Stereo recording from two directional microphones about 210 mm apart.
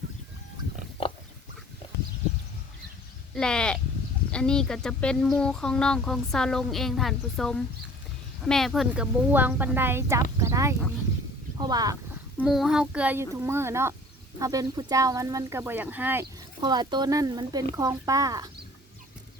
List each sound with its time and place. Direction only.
3.3 s speech: 5° left (ahead or behind); by 11.9 s 20° right (ahead or behind)
12.4 s speech: centre (ahead or behind); by 18.5 s 15° right (ahead or behind)